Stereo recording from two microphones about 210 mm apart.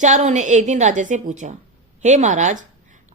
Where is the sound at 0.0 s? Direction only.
35° right (ahead or behind).